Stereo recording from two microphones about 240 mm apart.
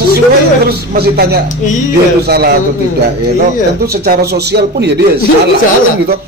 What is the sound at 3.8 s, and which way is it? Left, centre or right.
A man's voice, right.